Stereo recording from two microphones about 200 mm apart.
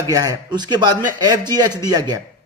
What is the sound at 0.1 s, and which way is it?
A man's voice, 20° right (ahead or behind).